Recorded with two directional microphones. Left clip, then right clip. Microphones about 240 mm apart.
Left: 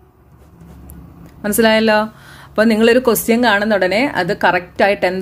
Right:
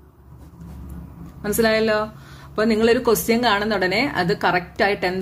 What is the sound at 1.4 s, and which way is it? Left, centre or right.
A woman's voice, left.